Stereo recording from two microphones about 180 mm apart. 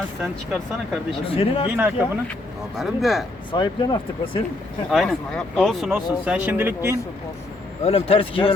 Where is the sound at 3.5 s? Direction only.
25° left (ahead or behind).